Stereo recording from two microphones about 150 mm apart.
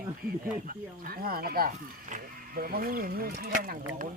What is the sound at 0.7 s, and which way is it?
Speech, 75° right (ahead or behind).